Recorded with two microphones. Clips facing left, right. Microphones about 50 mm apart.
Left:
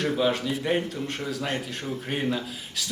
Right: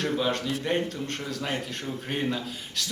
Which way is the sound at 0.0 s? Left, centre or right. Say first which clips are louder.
Left 2 dB; centre.